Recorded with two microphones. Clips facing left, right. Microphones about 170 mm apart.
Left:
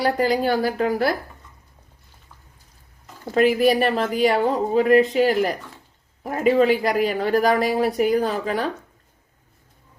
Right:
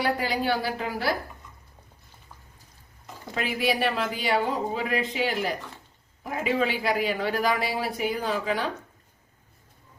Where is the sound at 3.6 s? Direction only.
45° left (ahead or behind).